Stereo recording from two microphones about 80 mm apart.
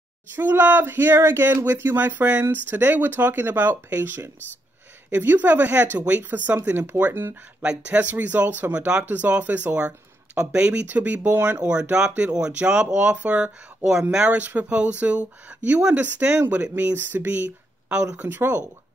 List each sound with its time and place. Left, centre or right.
0.4 s speech: right